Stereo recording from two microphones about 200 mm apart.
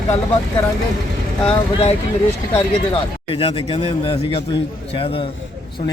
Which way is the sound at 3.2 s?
25° left (ahead or behind).